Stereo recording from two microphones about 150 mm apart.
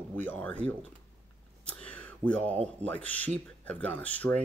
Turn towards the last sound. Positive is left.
turn(degrees=10)  # may be behind; listen again after turning